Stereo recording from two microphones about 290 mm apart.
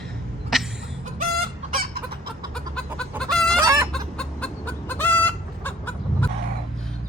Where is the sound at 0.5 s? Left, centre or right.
Centre.